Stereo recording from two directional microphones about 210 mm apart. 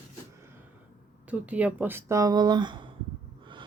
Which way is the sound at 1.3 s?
5° right (ahead or behind).